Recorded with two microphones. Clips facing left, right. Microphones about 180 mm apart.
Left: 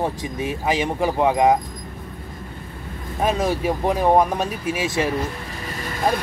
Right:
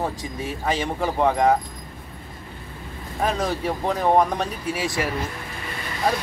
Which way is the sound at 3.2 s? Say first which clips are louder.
Left 3 dB; 10° left (ahead or behind).